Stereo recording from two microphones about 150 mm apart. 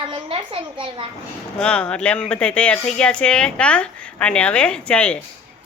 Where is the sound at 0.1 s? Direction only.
35° right (ahead or behind).